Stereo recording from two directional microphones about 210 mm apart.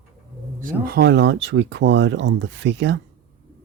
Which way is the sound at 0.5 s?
45° right (ahead or behind).